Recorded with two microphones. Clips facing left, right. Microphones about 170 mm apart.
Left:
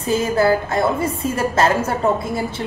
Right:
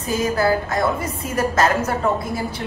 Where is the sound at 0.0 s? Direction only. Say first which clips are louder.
Left 3 dB; 25° left (ahead or behind).